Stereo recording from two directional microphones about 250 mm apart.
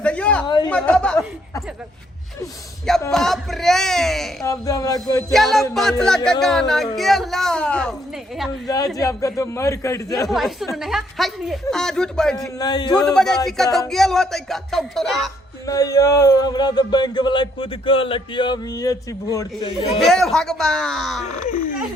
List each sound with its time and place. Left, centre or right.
0.0 s a sound: centre
0.4 s speech: centre
0.7 s a woman's voice: centre
3.0 s a woman's voice: centre
4.4 s speech: centre
5.3 s a woman's voice: centre
8.6 s speech: centre
10.2 s a woman's voice: centre
12.5 s speech: centre
13.1 s a woman's voice: centre
15.6 s speech: centre
20.0 s a woman's voice: centre